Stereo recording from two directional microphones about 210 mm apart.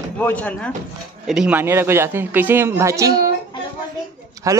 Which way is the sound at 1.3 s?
5° right (ahead or behind).